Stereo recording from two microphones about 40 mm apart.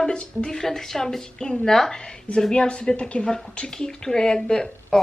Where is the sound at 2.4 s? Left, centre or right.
Left.